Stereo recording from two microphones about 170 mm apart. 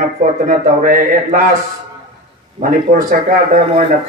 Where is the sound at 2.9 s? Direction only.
55° right (ahead or behind).